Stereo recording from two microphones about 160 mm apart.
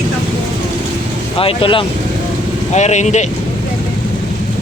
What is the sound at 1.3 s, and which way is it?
Speech, 35° left (ahead or behind).